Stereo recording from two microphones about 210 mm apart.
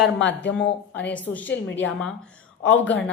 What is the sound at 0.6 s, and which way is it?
Speech, 5° left (ahead or behind).